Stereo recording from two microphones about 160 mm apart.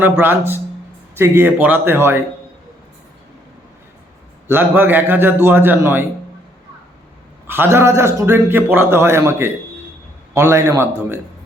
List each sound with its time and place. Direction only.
0.0 s a man's voice: 10° right (ahead or behind)
4.4 s a man's voice: 15° right (ahead or behind)
7.4 s a man's voice: 15° right (ahead or behind)